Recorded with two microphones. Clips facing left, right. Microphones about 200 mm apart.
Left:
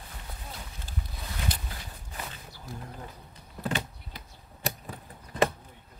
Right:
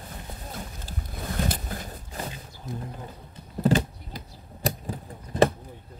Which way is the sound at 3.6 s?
40° right (ahead or behind).